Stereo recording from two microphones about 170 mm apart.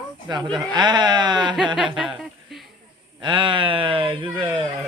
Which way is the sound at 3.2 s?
30° right (ahead or behind).